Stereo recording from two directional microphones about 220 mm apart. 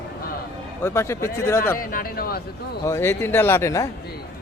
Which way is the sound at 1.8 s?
40° left (ahead or behind).